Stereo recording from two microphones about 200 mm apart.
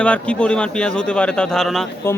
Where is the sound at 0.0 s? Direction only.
5° left (ahead or behind).